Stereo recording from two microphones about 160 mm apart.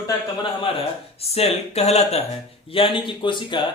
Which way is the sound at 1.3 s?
40° left (ahead or behind).